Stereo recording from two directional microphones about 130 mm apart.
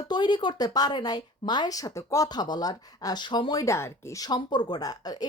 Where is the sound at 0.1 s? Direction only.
35° left (ahead or behind).